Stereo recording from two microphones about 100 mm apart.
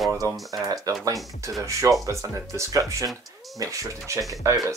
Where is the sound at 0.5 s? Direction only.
35° right (ahead or behind).